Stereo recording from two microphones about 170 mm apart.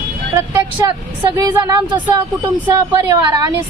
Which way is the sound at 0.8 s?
20° right (ahead or behind).